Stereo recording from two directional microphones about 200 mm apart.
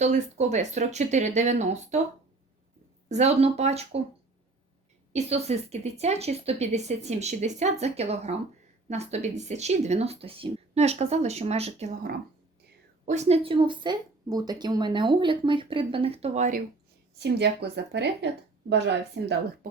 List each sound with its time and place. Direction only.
0.0 s a woman's voice: 35° right (ahead or behind)
3.1 s a woman's voice: 35° right (ahead or behind)
5.1 s a woman's voice: 30° right (ahead or behind)
13.1 s speech: 35° right (ahead or behind)
17.2 s speech: 55° right (ahead or behind)